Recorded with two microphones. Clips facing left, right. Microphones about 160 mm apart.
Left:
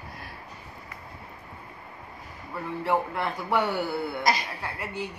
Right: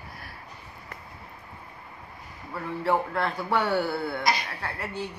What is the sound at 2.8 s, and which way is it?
A man's voice, 15° left (ahead or behind).